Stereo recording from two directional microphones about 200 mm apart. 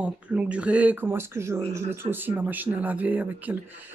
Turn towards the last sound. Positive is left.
turn(degrees=-10)  # may be behind; listen again after turning